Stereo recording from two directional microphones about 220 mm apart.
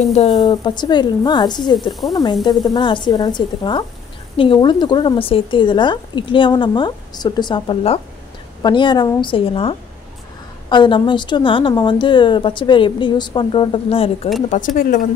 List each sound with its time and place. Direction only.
0.1 s speech: 25° left (ahead or behind)
1.9 s speech: centre (ahead or behind)
2.4 s speech: 20° left (ahead or behind)